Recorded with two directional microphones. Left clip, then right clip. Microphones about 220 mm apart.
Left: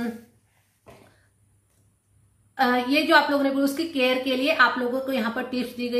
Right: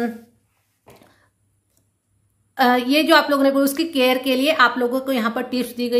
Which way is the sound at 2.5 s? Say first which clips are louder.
Right 5 dB; 45° right (ahead or behind).